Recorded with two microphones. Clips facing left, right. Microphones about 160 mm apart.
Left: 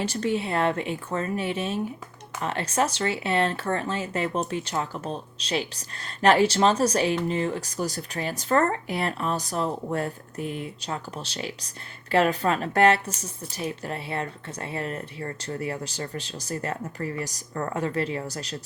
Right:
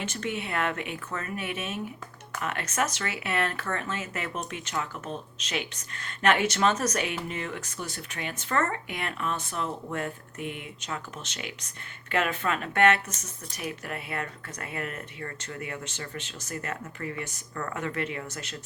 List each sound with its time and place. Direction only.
0.0 s speech: 35° left (ahead or behind)